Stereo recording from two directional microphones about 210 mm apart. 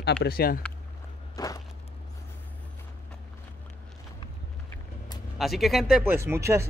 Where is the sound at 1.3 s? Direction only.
15° left (ahead or behind).